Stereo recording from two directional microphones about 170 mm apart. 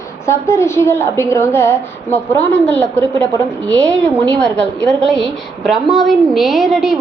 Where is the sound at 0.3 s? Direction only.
15° left (ahead or behind).